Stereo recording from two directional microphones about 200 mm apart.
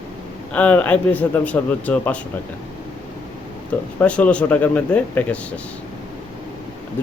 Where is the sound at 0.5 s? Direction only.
10° left (ahead or behind).